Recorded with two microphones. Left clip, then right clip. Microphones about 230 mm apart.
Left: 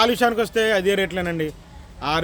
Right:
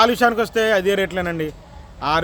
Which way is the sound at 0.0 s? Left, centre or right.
Centre.